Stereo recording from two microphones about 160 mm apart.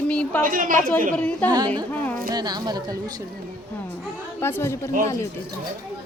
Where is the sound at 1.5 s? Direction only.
25° right (ahead or behind).